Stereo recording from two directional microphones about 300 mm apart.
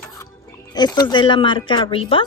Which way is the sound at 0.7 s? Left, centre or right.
Centre.